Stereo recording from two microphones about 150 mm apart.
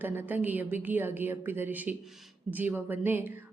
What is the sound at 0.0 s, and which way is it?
A woman's voice, 15° right (ahead or behind).